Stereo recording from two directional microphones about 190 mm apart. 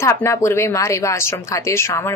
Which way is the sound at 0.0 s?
15° left (ahead or behind).